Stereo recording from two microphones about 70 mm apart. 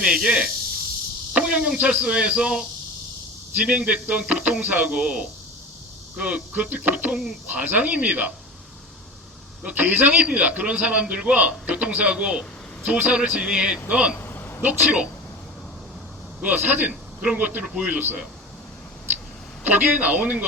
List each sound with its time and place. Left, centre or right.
0.0 s a man's voice: centre
9.6 s a man's voice: right
14.2 s vehicle: left
14.6 s a man's voice: right
16.4 s a man's voice: right
19.6 s a man's voice: right